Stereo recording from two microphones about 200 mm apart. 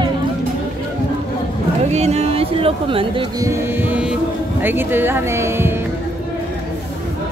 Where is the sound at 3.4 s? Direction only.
10° right (ahead or behind).